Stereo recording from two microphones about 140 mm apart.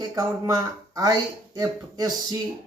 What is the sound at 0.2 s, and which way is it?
Speech, 25° right (ahead or behind).